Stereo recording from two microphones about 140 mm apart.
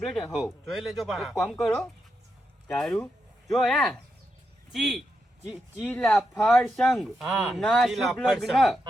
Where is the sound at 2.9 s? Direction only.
15° left (ahead or behind).